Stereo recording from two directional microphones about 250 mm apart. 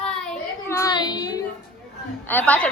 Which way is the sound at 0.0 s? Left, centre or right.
Centre.